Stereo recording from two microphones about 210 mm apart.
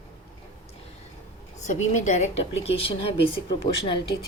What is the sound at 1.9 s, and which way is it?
Speech, 35° left (ahead or behind).